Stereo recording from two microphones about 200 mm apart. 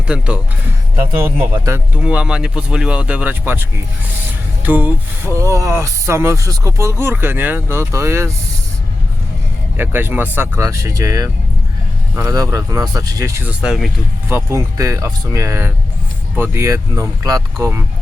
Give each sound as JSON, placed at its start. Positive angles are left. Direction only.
{"t": 0.1, "sound": "speech", "side_deg": -5}
{"t": 9.7, "sound": "speech", "side_deg": -10}